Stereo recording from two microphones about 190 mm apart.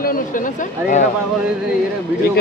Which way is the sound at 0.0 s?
50° left (ahead or behind).